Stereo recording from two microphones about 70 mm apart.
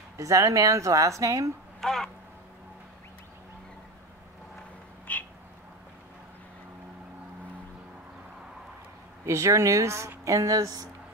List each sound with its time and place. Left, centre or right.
0.2 s speech: right
1.8 s speech: centre
5.1 s a sound: left
9.2 s speech: right